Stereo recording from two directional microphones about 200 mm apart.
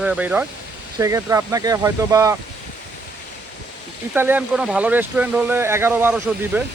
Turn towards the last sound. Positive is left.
turn(degrees=-10)  # may be behind; listen again after turning